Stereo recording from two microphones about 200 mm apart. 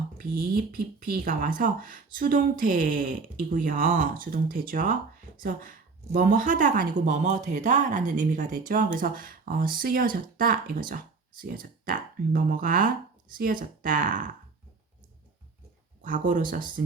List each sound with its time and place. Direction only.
0.2 s a woman's voice: 45° right (ahead or behind)
16.0 s speech: 40° right (ahead or behind)